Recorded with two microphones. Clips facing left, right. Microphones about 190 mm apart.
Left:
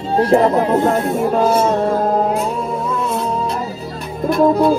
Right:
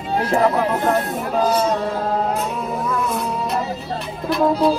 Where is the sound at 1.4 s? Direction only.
55° left (ahead or behind).